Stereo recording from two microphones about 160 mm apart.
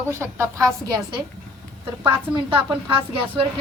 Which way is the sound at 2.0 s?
15° right (ahead or behind).